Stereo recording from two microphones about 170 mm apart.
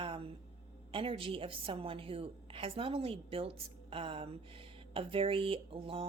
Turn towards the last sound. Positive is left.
turn(degrees=-30)  # may be behind; listen again after turning